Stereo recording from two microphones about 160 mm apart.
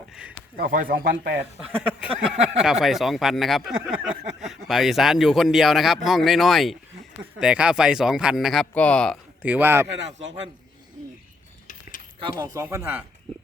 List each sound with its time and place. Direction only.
0.1 s a sound: 5° right (ahead or behind)
0.5 s speech: 65° right (ahead or behind)
1.4 s a man's voice: 10° right (ahead or behind); by 9.1 s 5° left (ahead or behind)
9.4 s speech: 10° right (ahead or behind)
12.3 s speech: 20° right (ahead or behind)